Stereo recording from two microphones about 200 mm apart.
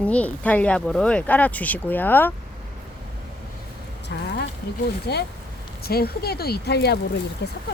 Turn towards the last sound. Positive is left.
turn(degrees=55)  # may be behind; listen again after turning